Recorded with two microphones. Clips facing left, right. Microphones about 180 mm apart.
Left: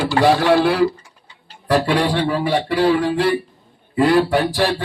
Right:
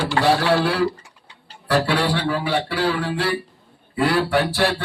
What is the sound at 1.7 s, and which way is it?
A man's voice, 20° left (ahead or behind).